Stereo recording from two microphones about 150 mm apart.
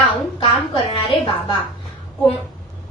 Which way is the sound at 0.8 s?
35° left (ahead or behind).